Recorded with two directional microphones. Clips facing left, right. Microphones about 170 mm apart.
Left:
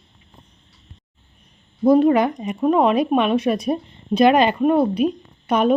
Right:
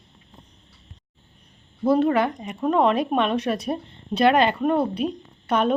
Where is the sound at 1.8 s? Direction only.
15° left (ahead or behind).